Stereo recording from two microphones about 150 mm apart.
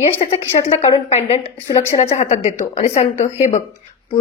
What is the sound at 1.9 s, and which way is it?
A woman's voice, 50° left (ahead or behind).